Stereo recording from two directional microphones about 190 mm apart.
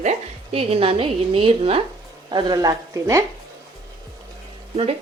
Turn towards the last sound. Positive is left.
turn(degrees=-30)  # may be behind; listen again after turning